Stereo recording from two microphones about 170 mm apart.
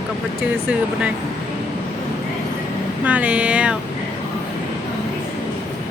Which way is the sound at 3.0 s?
10° right (ahead or behind).